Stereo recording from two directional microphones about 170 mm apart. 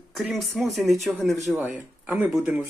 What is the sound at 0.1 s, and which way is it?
Speech, centre (ahead or behind).